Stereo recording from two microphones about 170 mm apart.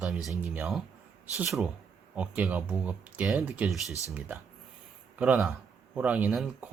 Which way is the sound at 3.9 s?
20° left (ahead or behind).